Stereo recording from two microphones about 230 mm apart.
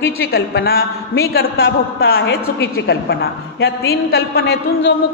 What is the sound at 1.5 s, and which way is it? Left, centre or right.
Speech, left.